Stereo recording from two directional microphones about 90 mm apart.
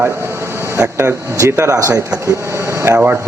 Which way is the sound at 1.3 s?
35° right (ahead or behind).